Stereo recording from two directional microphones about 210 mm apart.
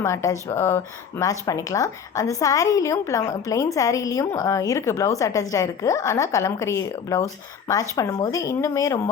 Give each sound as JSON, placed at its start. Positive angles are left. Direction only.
{"t": 0.0, "sound": "speech", "side_deg": 15}